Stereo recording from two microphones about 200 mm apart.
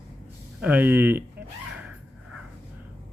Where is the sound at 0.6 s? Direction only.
5° right (ahead or behind).